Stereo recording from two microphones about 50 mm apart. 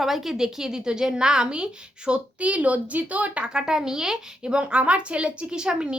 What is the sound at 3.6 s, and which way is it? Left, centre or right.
A woman's voice, centre.